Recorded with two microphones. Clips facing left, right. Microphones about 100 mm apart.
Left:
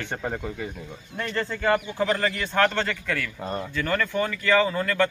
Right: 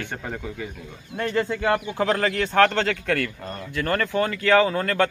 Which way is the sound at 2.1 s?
55° right (ahead or behind).